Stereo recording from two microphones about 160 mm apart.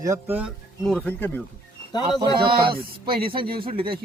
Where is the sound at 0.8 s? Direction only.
5° left (ahead or behind).